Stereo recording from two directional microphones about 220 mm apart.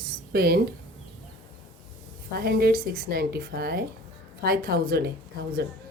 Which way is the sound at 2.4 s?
45° right (ahead or behind).